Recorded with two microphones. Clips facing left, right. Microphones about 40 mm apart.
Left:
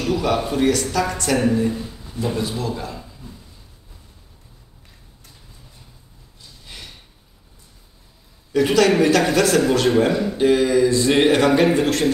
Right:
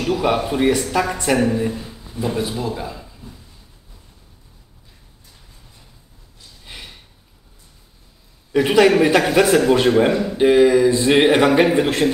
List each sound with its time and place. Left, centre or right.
0.0 s a man's voice: centre
6.6 s a sound: centre
8.5 s a man's voice: right